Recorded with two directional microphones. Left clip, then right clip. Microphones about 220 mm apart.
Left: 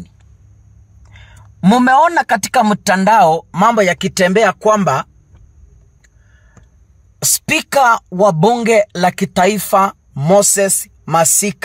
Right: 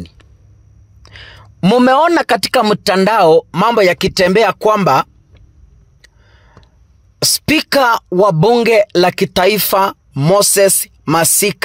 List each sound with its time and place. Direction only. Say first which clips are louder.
1.0 s speech: right 9 dB; 45° right (ahead or behind)
6.0 s a sound: right 6 dB; 45° right (ahead or behind)
7.2 s speech: right 2 dB; 45° right (ahead or behind)